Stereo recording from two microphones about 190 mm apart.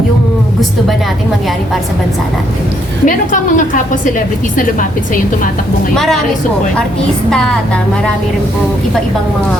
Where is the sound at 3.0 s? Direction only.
45° left (ahead or behind).